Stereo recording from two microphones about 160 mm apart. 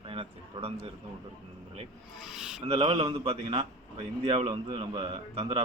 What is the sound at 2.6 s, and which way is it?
A man's voice, 35° right (ahead or behind).